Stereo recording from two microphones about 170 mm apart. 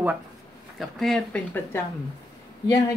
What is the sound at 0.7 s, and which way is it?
Speech, centre (ahead or behind).